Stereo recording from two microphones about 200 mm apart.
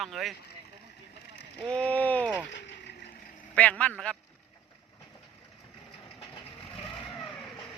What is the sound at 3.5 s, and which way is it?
Speech, 5° left (ahead or behind).